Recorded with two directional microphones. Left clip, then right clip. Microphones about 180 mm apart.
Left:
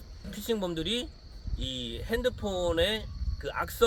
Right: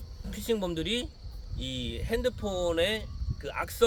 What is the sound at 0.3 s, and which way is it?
A man's voice, 10° right (ahead or behind).